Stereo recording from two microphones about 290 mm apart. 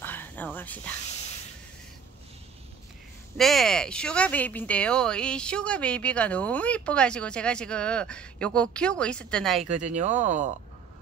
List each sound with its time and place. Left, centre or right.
0.0 s a sound: centre
3.3 s speech: centre
9.8 s speech: right